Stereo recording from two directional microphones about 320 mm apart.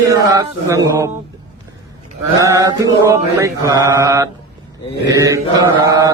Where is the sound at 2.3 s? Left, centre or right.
Centre.